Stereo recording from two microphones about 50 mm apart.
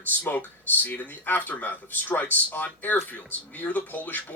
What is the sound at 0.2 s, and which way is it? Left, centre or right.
Speech, left.